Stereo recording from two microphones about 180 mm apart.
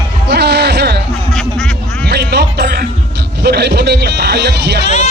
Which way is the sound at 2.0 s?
65° right (ahead or behind).